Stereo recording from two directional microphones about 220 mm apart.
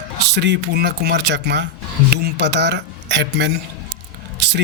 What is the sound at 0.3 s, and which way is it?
Speech, 50° right (ahead or behind).